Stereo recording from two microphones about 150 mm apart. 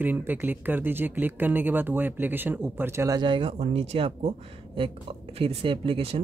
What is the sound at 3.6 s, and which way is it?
Speech, 45° right (ahead or behind).